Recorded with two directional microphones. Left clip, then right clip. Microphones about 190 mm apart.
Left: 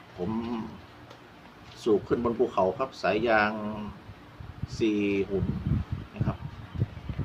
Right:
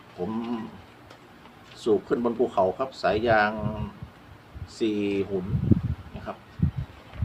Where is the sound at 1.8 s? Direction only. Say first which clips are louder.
Right 2 dB; 10° right (ahead or behind).